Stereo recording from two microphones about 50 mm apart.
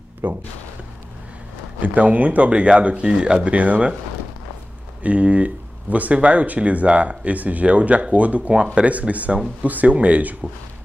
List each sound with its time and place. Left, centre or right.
0.2 s speech: right
1.8 s speech: right
3.4 s speech: right
5.0 s speech: right